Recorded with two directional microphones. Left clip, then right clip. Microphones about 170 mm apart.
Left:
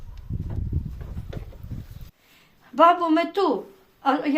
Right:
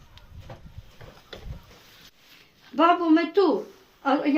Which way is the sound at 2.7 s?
40° left (ahead or behind).